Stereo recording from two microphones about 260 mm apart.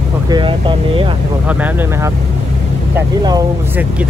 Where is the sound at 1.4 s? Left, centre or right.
Centre.